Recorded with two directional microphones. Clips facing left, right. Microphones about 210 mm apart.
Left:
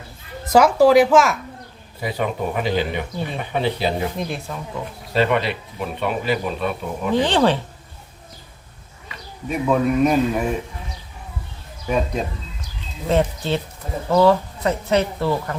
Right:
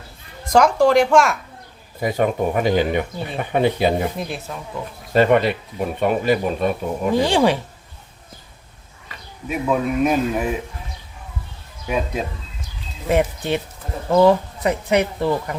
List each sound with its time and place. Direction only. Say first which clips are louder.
0.4 s a man's voice: left 1 dB; 5° left (ahead or behind)
2.0 s speech: right 4 dB; 45° right (ahead or behind)
4.2 s a man's voice: left 1 dB; 5° right (ahead or behind)
5.1 s speech: right 4 dB; 50° right (ahead or behind)
7.1 s speech: even; 10° right (ahead or behind)
9.5 s a man's voice: left 2 dB; 5° right (ahead or behind)
11.9 s a man's voice: left 1 dB; 5° right (ahead or behind)